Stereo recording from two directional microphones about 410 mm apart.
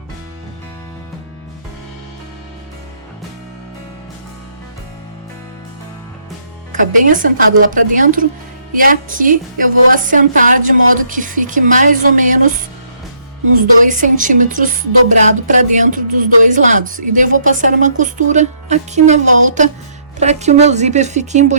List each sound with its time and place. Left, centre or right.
6.7 s speech: centre
13.6 s speech: centre